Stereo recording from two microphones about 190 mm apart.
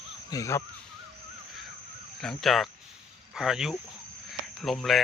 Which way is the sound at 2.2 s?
Centre (ahead or behind).